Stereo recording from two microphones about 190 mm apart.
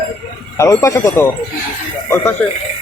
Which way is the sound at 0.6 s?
15° left (ahead or behind).